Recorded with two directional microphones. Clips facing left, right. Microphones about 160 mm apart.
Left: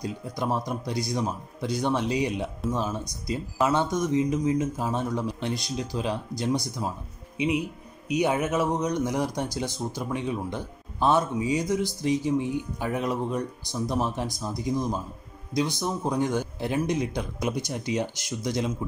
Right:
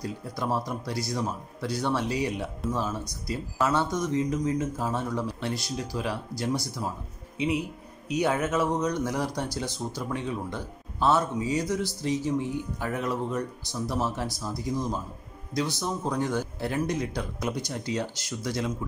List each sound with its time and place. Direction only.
0.0 s speech: 15° left (ahead or behind)